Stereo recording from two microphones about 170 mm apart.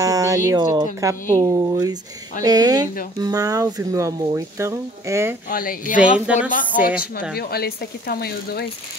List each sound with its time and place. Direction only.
0.0 s a sound: 20° right (ahead or behind)
0.5 s speech: 25° right (ahead or behind)
5.5 s speech: 55° left (ahead or behind)
6.1 s speech: 5° right (ahead or behind)
7.3 s speech: 65° left (ahead or behind)